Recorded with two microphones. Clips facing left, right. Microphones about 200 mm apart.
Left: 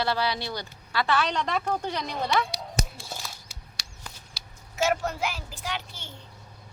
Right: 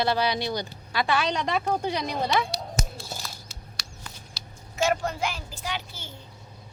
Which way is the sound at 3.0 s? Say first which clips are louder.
Right 1 dB; centre (ahead or behind).